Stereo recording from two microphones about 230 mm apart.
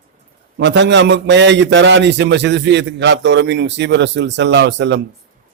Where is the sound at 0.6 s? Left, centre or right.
Right.